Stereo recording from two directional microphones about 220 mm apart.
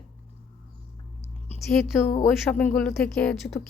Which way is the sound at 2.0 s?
35° left (ahead or behind).